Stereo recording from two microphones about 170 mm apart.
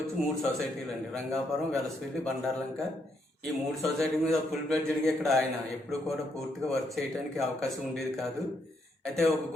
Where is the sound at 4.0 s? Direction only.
Centre (ahead or behind).